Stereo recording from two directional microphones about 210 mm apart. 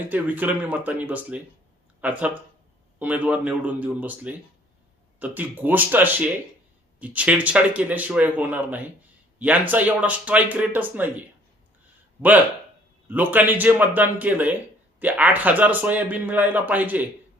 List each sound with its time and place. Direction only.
0.0 s a man's voice: 10° right (ahead or behind)
13.1 s a man's voice: 10° right (ahead or behind)